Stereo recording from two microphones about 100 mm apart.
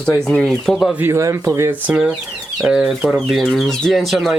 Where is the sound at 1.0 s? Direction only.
30° right (ahead or behind).